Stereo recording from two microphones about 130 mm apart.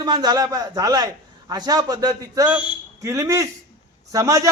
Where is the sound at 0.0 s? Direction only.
35° right (ahead or behind).